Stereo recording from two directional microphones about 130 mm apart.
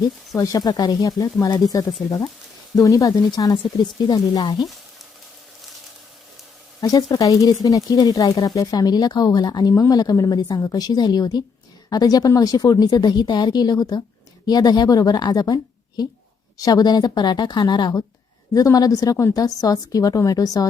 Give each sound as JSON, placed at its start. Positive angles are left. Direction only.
{"t": 0.3, "sound": "a woman's voice", "side_deg": 25}
{"t": 6.8, "sound": "a woman's voice", "side_deg": 30}